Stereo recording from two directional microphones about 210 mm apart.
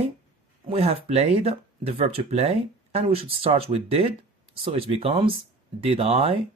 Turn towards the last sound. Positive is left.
turn(degrees=-30)  # may be behind; listen again after turning